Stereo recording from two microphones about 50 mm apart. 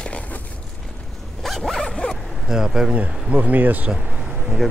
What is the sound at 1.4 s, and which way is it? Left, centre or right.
Dog, centre.